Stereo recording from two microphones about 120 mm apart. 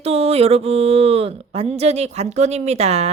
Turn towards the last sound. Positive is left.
turn(degrees=-65)  # may be behind; listen again after turning